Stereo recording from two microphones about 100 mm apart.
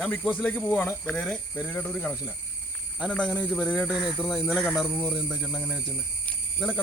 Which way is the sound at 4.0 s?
10° right (ahead or behind).